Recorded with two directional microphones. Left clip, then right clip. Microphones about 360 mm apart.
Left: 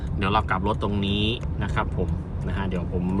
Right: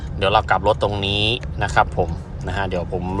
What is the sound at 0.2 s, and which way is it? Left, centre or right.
Speech, centre.